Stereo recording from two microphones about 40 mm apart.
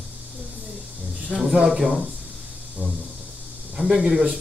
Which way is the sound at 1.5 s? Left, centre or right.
Right.